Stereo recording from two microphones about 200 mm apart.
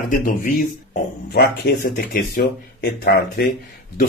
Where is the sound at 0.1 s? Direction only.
45° left (ahead or behind).